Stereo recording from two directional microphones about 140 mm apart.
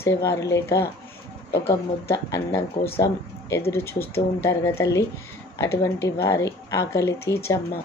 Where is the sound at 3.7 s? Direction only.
20° left (ahead or behind).